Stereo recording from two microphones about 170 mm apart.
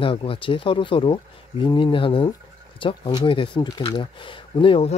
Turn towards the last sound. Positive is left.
turn(degrees=30)  # may be behind; listen again after turning